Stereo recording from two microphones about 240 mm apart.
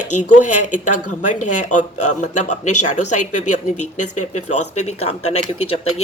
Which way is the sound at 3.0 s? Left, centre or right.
Left.